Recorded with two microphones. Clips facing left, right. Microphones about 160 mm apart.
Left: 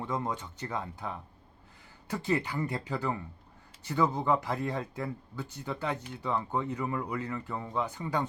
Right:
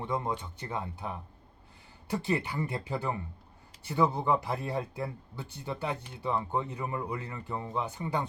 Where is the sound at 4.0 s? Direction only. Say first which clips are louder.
Right 1 dB; 15° right (ahead or behind).